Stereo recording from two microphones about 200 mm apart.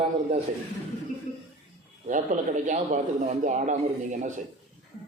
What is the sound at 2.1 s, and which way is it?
A man's voice, 40° right (ahead or behind).